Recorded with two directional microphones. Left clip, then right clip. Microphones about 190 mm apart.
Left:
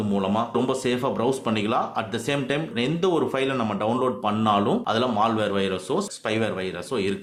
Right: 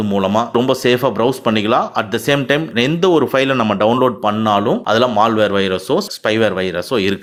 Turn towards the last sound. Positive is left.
turn(degrees=-35)  # may be behind; listen again after turning